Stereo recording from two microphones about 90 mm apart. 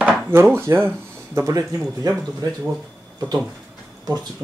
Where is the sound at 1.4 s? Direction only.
35° right (ahead or behind).